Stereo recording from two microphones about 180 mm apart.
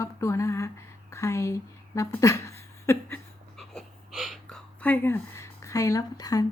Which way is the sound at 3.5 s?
Centre (ahead or behind).